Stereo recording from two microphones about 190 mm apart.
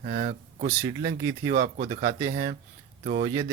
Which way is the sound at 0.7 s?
15° right (ahead or behind).